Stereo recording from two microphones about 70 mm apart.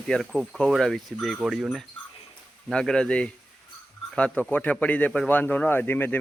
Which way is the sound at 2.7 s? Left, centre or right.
Centre.